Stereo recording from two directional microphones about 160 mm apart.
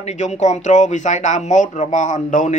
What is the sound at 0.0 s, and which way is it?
Speech, 45° left (ahead or behind).